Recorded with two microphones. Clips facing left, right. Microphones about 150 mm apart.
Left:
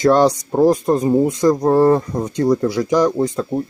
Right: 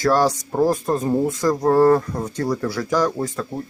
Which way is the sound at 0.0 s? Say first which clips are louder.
Left 5 dB; 20° left (ahead or behind).